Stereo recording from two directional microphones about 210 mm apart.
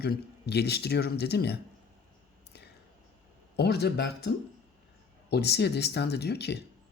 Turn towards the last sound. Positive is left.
turn(degrees=50)  # may be behind; listen again after turning